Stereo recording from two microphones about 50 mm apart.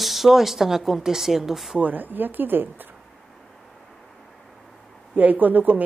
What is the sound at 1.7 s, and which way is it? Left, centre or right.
A woman's voice, right.